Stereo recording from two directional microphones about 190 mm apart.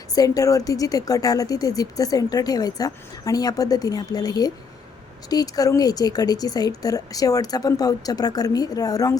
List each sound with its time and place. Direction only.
0.1 s a woman's voice: 20° left (ahead or behind)